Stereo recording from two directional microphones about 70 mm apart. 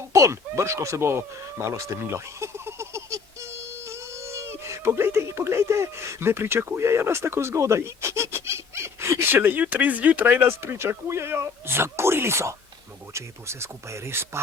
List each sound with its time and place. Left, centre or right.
0.1 s speech: right